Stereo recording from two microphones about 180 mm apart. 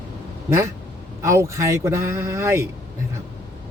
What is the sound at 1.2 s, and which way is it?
Speech, 15° right (ahead or behind).